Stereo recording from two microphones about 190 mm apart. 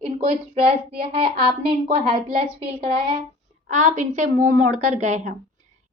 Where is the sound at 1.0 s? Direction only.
30° right (ahead or behind).